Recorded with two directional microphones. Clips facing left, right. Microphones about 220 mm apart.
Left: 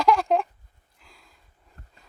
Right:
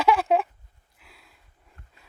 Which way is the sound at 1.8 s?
40° left (ahead or behind).